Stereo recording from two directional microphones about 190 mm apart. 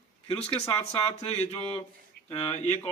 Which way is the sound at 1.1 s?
35° left (ahead or behind).